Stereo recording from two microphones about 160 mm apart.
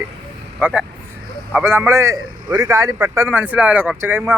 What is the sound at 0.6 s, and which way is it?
Speech, 5° right (ahead or behind).